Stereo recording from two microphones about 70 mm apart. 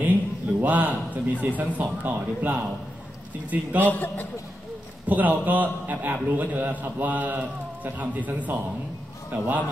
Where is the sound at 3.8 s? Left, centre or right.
Left.